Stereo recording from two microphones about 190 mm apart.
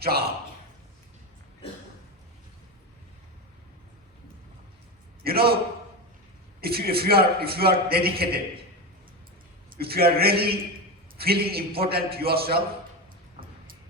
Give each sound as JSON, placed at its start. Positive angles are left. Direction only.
{"t": 0.0, "sound": "a man's voice", "side_deg": -55}
{"t": 5.2, "sound": "a man's voice", "side_deg": -55}
{"t": 6.6, "sound": "a man's voice", "side_deg": -55}
{"t": 9.7, "sound": "a man's voice", "side_deg": -55}